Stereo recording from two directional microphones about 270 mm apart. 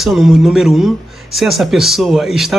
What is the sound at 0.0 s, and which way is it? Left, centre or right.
Speech, centre.